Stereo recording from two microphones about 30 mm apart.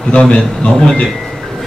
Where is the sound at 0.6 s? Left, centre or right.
Left.